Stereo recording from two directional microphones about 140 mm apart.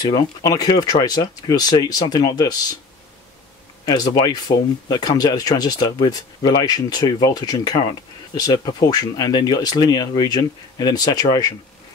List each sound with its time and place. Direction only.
0.1 s speech: 25° left (ahead or behind)
3.8 s speech: 30° left (ahead or behind)